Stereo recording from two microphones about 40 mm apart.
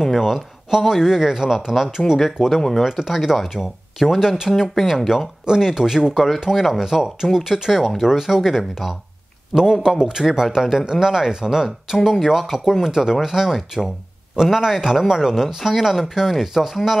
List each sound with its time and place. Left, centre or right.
0.0 s speech: centre
1.9 s speech: centre
9.5 s a man's voice: centre
9.8 s a man's voice: centre